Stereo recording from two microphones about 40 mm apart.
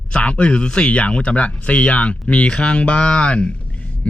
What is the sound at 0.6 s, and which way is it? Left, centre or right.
Speech, left.